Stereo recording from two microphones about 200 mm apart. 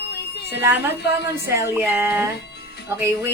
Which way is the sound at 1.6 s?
10° right (ahead or behind).